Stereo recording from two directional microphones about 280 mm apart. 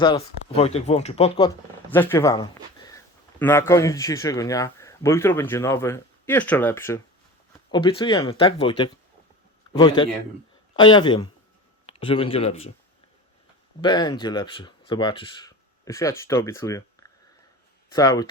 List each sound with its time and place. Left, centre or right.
0.0 s speech: centre
13.8 s speech: centre